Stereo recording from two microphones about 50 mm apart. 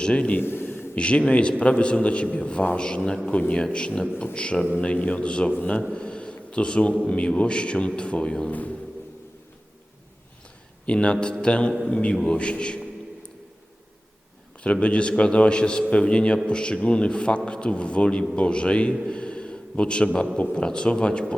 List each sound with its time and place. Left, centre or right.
0.0 s a man's voice: left
0.3 s a man's voice: left
0.9 s a man's voice: left
5.9 s a sound: centre
7.1 s a man's voice: left
8.4 s speech: left
10.8 s a man's voice: left
12.4 s a man's voice: left
14.6 s a man's voice: left
19.0 s a sound: centre
20.5 s a man's voice: centre